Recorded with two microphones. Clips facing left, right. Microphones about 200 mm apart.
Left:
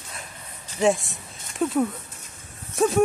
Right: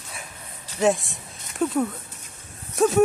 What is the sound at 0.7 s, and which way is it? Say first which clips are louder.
Speech: even; centre (ahead or behind).